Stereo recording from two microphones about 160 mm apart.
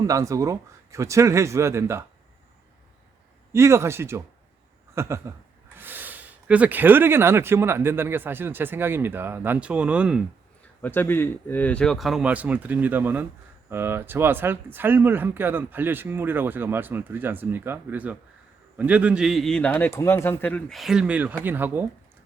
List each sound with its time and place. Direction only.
0.0 s speech: 20° right (ahead or behind)
3.5 s speech: 15° right (ahead or behind)
10.8 s a man's voice: 10° left (ahead or behind)
20.7 s speech: 5° right (ahead or behind)